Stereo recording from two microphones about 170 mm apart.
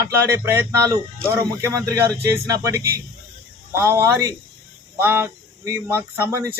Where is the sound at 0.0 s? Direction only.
15° right (ahead or behind).